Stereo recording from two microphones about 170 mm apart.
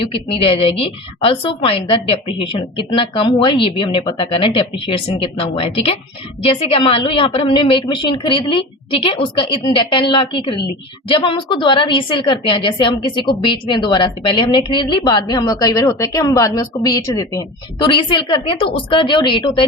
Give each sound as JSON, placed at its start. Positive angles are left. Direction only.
{"t": 0.0, "sound": "a woman's voice", "side_deg": 30}